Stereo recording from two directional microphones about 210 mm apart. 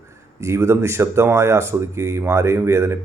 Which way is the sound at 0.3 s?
10° right (ahead or behind).